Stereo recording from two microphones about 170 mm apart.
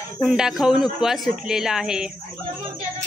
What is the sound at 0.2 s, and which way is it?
Speech, centre (ahead or behind).